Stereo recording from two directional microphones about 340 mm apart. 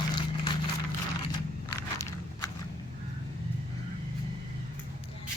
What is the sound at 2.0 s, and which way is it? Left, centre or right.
Biting, centre.